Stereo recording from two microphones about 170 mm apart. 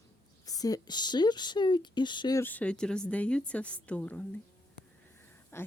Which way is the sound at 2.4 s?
10° left (ahead or behind).